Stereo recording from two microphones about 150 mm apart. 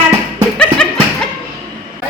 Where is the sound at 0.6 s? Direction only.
5° left (ahead or behind).